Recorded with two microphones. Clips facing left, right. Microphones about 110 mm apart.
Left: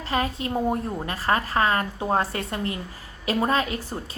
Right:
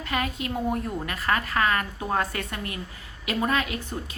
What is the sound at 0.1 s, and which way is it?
A woman's voice, 30° left (ahead or behind).